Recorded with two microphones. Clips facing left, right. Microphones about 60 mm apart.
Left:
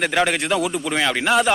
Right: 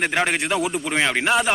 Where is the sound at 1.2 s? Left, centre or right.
Centre.